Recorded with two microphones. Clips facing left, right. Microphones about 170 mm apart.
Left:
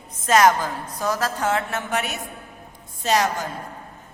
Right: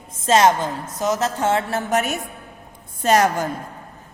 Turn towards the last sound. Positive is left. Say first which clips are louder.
# right 4 dB
turn(degrees=-50)  # may be behind; listen again after turning